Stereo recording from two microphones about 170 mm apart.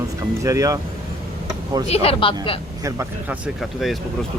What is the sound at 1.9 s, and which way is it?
Speech, 35° left (ahead or behind).